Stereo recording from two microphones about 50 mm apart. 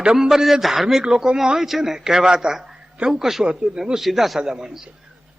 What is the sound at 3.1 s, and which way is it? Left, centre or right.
Speech, centre.